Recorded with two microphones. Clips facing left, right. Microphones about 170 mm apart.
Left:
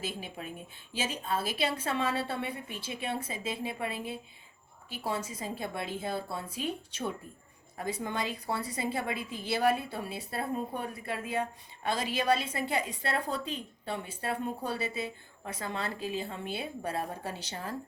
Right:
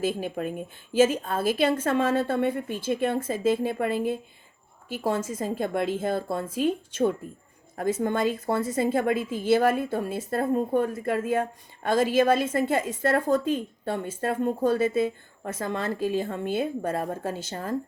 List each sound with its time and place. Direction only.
0.0 s a woman's voice: 50° right (ahead or behind)